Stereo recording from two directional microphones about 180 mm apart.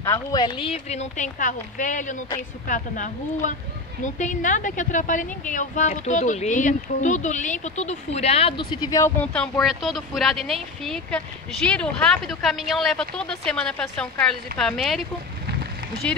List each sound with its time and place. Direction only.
0.0 s a woman's voice: 20° left (ahead or behind)
9.2 s speech: 5° left (ahead or behind)